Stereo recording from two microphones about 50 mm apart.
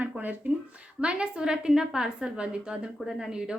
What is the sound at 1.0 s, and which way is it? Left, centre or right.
A woman's voice, centre.